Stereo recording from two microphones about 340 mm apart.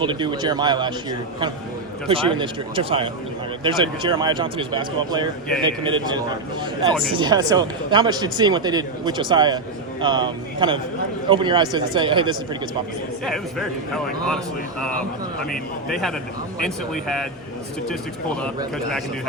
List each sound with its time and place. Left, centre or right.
0.0 s speech: centre
2.0 s speech: centre
7.2 s speech: centre
13.2 s speech: centre